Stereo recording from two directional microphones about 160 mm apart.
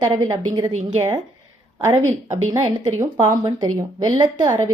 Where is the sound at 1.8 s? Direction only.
15° right (ahead or behind).